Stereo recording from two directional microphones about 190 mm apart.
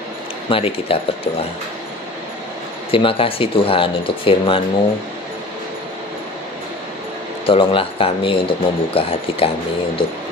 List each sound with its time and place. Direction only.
0.5 s speech: 30° left (ahead or behind)
2.9 s speech: 30° left (ahead or behind)
7.4 s speech: 30° left (ahead or behind)